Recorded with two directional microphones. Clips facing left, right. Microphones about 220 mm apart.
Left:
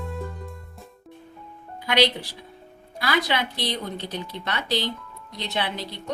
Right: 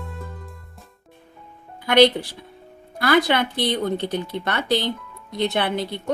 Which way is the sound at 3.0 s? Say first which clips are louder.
Right 6 dB; 50° right (ahead or behind).